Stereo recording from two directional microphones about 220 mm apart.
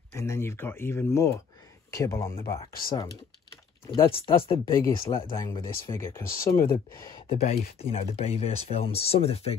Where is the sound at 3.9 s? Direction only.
20° left (ahead or behind).